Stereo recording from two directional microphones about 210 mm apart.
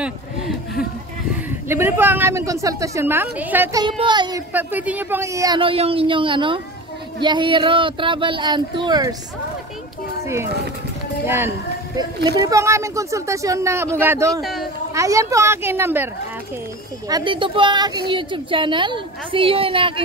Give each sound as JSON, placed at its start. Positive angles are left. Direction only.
{"t": 1.7, "sound": "a woman's voice", "side_deg": -10}
{"t": 4.0, "sound": "speech", "side_deg": -20}
{"t": 4.5, "sound": "a woman's voice", "side_deg": -10}
{"t": 10.2, "sound": "children playing", "side_deg": -15}
{"t": 11.2, "sound": "a woman's voice", "side_deg": -10}
{"t": 17.1, "sound": "a woman's voice", "side_deg": -25}